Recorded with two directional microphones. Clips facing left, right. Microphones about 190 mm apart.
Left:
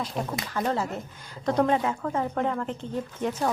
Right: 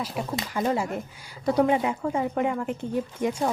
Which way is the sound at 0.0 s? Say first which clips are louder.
Right 1 dB; 5° right (ahead or behind).